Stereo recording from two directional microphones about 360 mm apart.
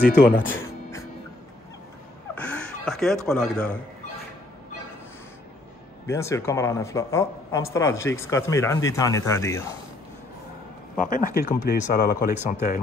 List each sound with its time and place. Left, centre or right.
0.0 s speech: left
0.5 s music: centre
2.3 s a sound: centre
6.0 s speech: centre
11.0 s speech: left